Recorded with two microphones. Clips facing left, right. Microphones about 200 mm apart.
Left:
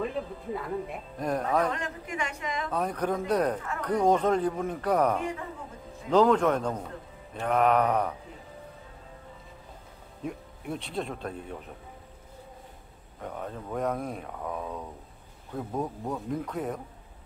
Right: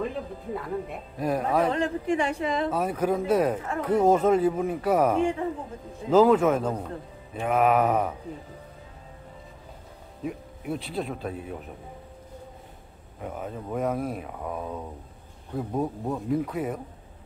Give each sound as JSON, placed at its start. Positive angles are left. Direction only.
{"t": 0.0, "sound": "music", "side_deg": 0}
{"t": 1.2, "sound": "speech", "side_deg": -5}
{"t": 1.7, "sound": "a woman's voice", "side_deg": -30}
{"t": 2.7, "sound": "speech", "side_deg": -5}
{"t": 10.2, "sound": "speech", "side_deg": -5}
{"t": 13.2, "sound": "speech", "side_deg": -5}